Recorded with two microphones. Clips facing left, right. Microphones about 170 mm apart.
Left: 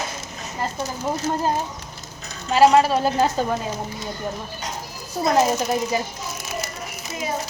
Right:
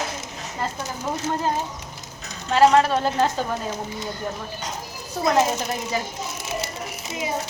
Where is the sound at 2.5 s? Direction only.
10° left (ahead or behind).